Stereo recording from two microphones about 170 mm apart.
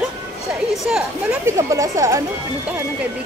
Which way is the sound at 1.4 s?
15° right (ahead or behind).